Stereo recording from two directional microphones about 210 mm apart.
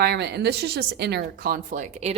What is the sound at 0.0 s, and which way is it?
A woman's voice, 55° right (ahead or behind).